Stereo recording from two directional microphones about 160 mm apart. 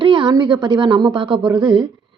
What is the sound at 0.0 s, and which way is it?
A woman's voice, 30° right (ahead or behind).